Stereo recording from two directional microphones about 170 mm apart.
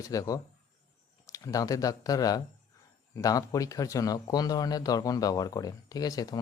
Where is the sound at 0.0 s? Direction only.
20° left (ahead or behind).